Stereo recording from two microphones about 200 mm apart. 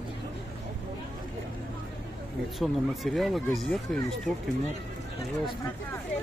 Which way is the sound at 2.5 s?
Centre (ahead or behind).